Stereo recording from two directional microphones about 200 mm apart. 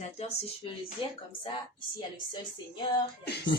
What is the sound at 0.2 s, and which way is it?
Speech, 30° left (ahead or behind).